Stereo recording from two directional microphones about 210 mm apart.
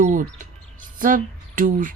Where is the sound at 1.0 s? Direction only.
40° right (ahead or behind).